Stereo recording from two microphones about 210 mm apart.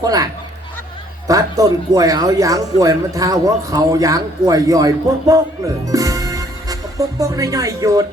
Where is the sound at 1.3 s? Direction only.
15° right (ahead or behind).